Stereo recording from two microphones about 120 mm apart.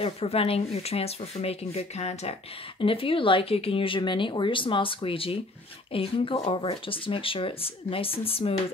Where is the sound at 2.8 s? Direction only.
50° left (ahead or behind).